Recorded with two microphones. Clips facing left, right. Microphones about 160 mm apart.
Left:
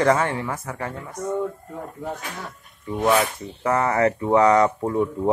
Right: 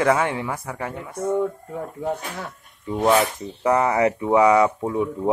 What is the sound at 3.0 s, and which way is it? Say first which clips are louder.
Speech: right 1 dB; 15° right (ahead or behind).